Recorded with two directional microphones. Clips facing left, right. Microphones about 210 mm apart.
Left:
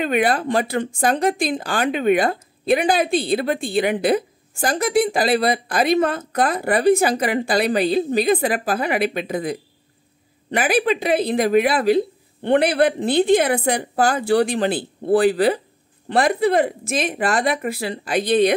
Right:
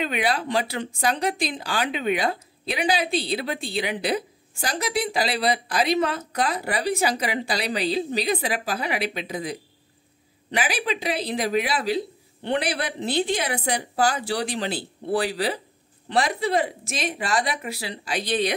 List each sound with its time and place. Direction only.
0.0 s speech: 50° left (ahead or behind)